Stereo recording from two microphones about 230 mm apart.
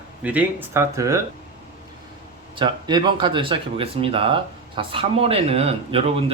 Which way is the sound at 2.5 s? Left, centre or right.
Centre.